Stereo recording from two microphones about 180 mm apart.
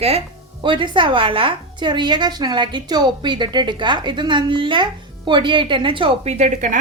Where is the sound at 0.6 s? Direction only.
25° right (ahead or behind).